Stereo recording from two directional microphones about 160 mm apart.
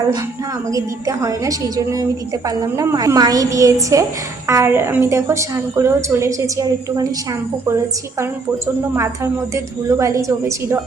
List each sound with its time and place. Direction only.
0.7 s a woman's voice: 20° right (ahead or behind)
8.2 s a woman's voice: 15° right (ahead or behind)